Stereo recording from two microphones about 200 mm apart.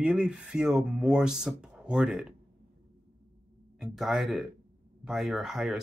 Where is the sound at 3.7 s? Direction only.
Centre (ahead or behind).